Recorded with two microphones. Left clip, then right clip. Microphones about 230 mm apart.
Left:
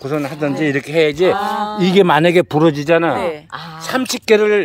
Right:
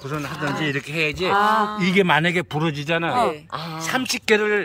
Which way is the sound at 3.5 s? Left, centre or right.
Right.